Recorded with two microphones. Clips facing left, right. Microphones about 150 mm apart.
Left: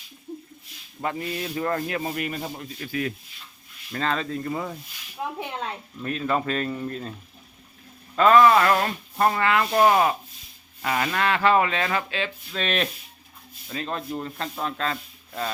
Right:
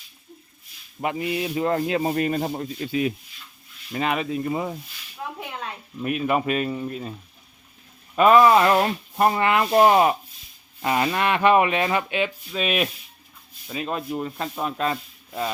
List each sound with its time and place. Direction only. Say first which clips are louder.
1.0 s speech: right 4 dB; 15° right (ahead or behind)
2.0 s sanding: right 6 dB; 35° right (ahead or behind)
2.8 s rub: right 4 dB; 20° right (ahead or behind)
3.9 s speech: right 2 dB; 15° right (ahead or behind)
5.1 s a sound: left 3 dB; 25° left (ahead or behind)
6.0 s speech: right 3 dB; 15° right (ahead or behind)
8.1 s rub: right 1 dB; 15° right (ahead or behind)
13.7 s speech: right 2 dB; 10° right (ahead or behind)